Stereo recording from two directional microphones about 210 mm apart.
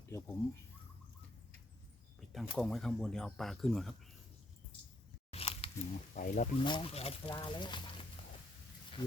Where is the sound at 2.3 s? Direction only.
Centre (ahead or behind).